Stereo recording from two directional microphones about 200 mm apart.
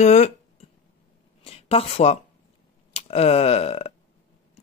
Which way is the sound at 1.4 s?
30° left (ahead or behind).